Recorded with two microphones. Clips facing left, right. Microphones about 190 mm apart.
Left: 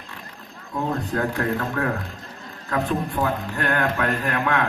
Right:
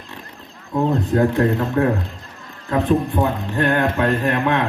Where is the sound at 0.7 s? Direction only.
25° right (ahead or behind).